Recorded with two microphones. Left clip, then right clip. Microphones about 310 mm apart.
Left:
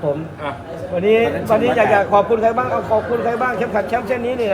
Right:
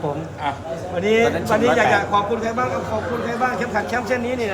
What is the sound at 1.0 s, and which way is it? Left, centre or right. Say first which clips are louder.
Speech: left 2 dB; centre.